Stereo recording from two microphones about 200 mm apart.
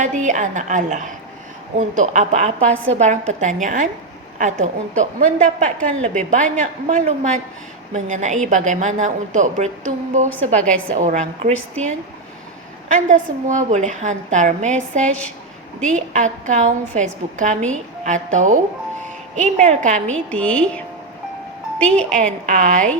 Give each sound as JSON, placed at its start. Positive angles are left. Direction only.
{"t": 0.0, "sound": "a woman's voice", "side_deg": -40}
{"t": 10.6, "sound": "a woman's voice", "side_deg": 5}
{"t": 10.9, "sound": "a woman's voice", "side_deg": -40}
{"t": 12.9, "sound": "a woman's voice", "side_deg": -40}
{"t": 20.3, "sound": "a woman's voice", "side_deg": 5}
{"t": 22.4, "sound": "a woman's voice", "side_deg": -40}